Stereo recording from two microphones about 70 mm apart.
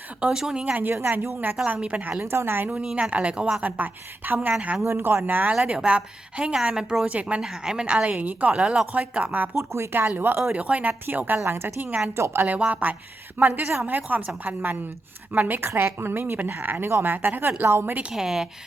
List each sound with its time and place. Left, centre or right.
0.2 s a woman's voice: centre
0.6 s speech: right
1.6 s speech: centre
2.2 s a woman's voice: right
2.7 s a woman's voice: centre
9.6 s a woman's voice: right
10.2 s a woman's voice: right
11.9 s speech: centre
12.1 s a woman's voice: right
12.5 s speech: right
13.5 s a woman's voice: right
13.8 s a woman's voice: right
18.1 s a woman's voice: centre